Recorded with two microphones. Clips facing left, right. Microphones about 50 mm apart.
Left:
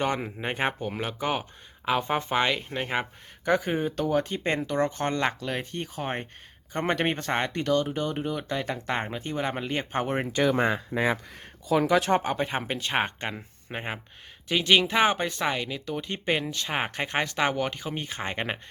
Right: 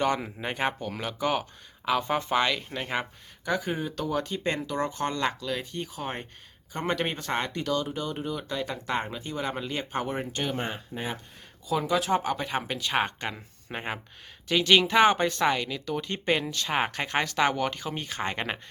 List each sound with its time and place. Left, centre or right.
0.0 s speech: centre
3.4 s speech: left
11.7 s speech: left
12.1 s speech: left
13.3 s speech: centre